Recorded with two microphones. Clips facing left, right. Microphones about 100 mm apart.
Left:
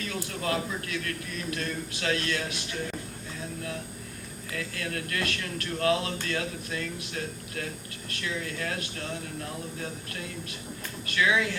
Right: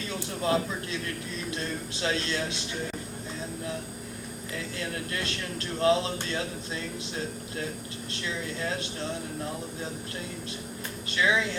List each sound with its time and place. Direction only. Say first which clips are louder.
0.4 s speech: right 4 dB; 25° right (ahead or behind)
4.5 s speech: left 1 dB; 25° right (ahead or behind)
11.1 s speech: even; 25° right (ahead or behind)